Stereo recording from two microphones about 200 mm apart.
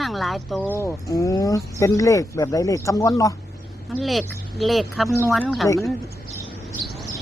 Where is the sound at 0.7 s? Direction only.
10° left (ahead or behind).